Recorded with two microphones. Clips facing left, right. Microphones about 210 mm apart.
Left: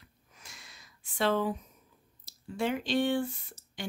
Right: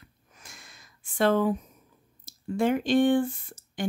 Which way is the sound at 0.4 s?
50° right (ahead or behind).